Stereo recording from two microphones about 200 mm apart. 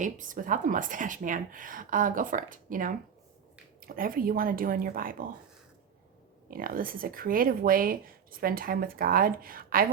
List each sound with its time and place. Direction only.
0.0 s a woman's voice: 40° right (ahead or behind)
6.5 s speech: 45° right (ahead or behind)